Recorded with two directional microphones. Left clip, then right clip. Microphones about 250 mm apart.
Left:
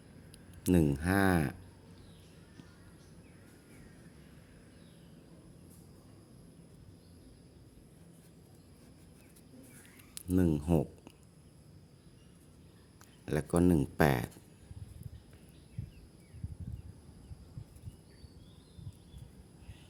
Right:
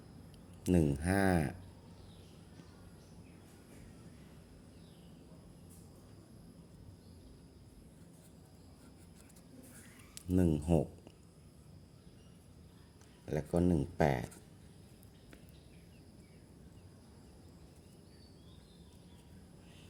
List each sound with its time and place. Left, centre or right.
0.6 s speech: centre
10.2 s speech: centre
13.2 s speech: left